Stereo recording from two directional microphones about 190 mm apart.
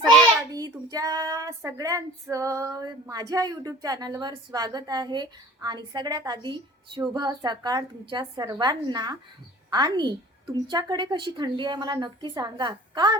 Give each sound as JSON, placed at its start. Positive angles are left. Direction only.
{"t": 0.5, "sound": "female singing", "side_deg": -20}
{"t": 9.6, "sound": "a woman's voice", "side_deg": -20}
{"t": 10.7, "sound": "female singing", "side_deg": -20}